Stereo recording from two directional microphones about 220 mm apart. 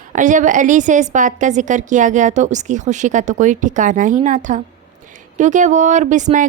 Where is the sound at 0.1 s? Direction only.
35° right (ahead or behind).